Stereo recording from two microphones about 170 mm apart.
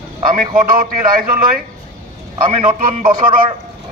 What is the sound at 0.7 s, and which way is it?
Speech, 55° right (ahead or behind).